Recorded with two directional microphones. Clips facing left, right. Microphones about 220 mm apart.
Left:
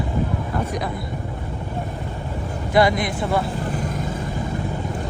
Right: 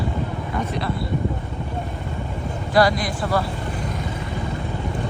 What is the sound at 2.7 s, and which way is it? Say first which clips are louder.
Speech: left 1 dB; 20° left (ahead or behind).